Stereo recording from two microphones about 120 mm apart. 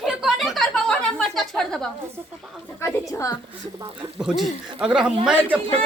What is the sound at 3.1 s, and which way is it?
Speech, 30° left (ahead or behind).